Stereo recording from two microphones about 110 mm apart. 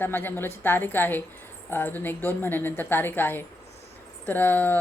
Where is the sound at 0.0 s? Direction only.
20° left (ahead or behind).